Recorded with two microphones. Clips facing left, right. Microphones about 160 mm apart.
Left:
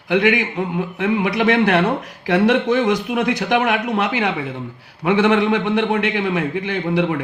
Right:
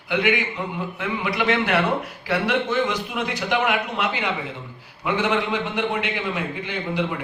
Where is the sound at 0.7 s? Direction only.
55° left (ahead or behind).